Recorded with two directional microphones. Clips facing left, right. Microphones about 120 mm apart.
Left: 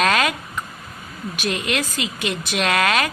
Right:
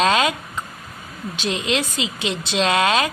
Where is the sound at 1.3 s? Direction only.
25° right (ahead or behind).